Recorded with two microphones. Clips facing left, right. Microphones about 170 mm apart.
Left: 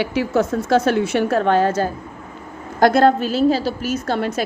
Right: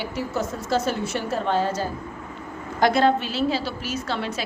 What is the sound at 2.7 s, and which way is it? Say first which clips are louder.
A woman's voice: left 5 dB; 45° left (ahead or behind).